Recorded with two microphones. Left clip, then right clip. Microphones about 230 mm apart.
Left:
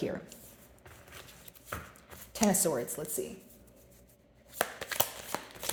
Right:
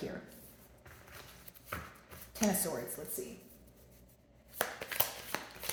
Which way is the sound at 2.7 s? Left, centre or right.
Left.